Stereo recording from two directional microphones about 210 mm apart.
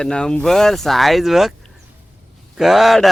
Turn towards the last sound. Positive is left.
turn(degrees=0)  # may be behind; listen again after turning